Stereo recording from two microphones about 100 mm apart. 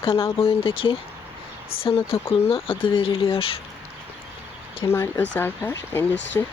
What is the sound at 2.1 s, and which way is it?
Speech, 70° left (ahead or behind).